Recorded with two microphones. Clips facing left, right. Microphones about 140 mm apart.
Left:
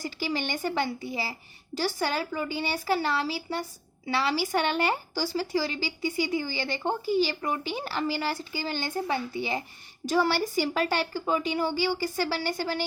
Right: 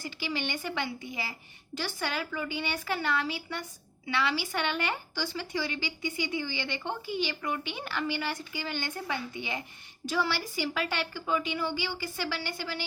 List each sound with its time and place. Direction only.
0.0 s a woman's voice: 40° left (ahead or behind)